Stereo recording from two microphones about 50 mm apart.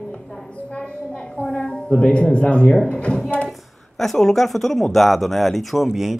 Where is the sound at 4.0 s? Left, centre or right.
Centre.